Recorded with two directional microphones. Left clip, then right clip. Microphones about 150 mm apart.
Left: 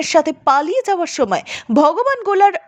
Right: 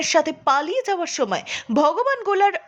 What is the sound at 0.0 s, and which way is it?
A woman's voice, 25° left (ahead or behind).